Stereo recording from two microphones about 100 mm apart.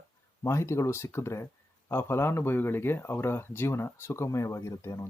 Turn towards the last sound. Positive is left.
turn(degrees=30)  # may be behind; listen again after turning